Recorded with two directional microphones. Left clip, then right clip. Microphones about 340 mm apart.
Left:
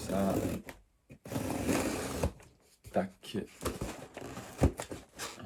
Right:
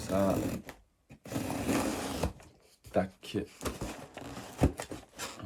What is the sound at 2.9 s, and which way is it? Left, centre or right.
Speech, right.